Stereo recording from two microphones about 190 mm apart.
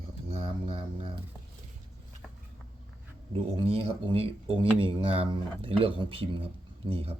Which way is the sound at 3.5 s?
30° right (ahead or behind).